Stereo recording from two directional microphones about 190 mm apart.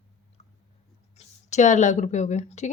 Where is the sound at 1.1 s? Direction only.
35° left (ahead or behind).